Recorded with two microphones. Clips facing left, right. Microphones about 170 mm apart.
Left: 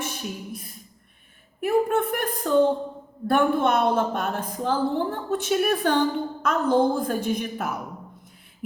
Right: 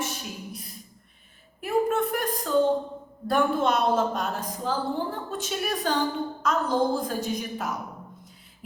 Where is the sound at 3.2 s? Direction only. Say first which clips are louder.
Left 3 dB; 60° left (ahead or behind).